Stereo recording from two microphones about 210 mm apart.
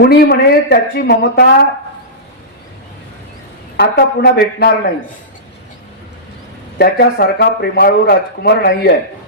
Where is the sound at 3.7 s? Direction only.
50° left (ahead or behind).